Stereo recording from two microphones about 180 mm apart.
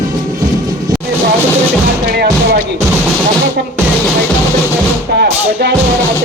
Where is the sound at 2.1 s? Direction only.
60° right (ahead or behind).